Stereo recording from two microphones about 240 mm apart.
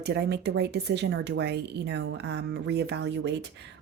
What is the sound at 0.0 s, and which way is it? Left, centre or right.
A woman's voice, right.